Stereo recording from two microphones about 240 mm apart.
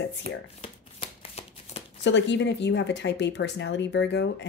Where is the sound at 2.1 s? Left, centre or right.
Left.